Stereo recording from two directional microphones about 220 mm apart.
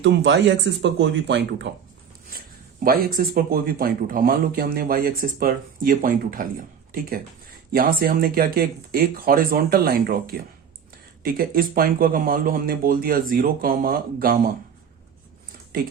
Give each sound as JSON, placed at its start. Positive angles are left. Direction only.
{"t": 0.0, "sound": "speech", "side_deg": -55}
{"t": 2.8, "sound": "speech", "side_deg": -40}
{"t": 7.7, "sound": "speech", "side_deg": -40}